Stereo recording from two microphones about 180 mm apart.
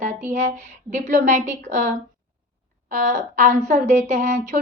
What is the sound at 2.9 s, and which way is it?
A woman's voice, 45° right (ahead or behind).